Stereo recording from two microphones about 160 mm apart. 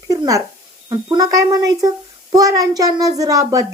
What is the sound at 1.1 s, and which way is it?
A woman's voice, 20° right (ahead or behind).